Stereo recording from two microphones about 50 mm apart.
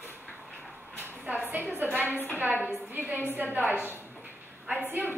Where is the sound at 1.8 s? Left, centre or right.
Right.